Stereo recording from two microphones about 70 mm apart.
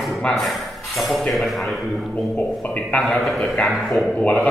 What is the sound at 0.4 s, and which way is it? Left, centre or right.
Speech, centre.